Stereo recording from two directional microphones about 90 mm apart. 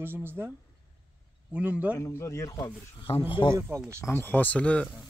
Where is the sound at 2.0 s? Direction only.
30° left (ahead or behind).